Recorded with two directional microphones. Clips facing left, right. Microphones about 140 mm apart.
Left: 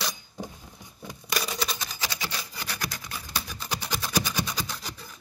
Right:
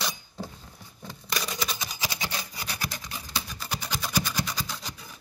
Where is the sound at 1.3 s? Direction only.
Centre (ahead or behind).